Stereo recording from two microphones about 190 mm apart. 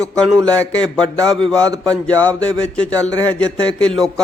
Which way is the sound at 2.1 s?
5° left (ahead or behind).